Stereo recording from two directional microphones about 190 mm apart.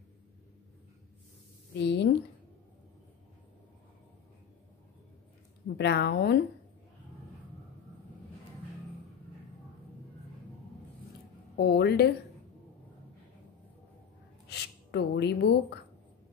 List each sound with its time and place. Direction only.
1.8 s speech: 65° left (ahead or behind)
5.8 s speech: 60° left (ahead or behind)
11.5 s speech: 60° left (ahead or behind)
14.5 s speech: 60° left (ahead or behind)